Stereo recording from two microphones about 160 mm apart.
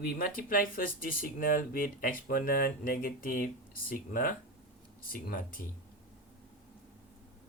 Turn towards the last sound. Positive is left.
turn(degrees=65)  # may be behind; listen again after turning